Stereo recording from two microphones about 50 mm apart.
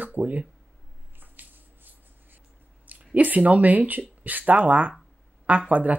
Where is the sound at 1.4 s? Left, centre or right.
Right.